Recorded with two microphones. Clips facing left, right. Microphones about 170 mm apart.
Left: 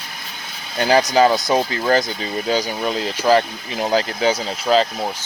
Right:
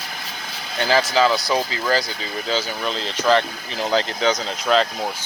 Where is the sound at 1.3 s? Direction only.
20° left (ahead or behind).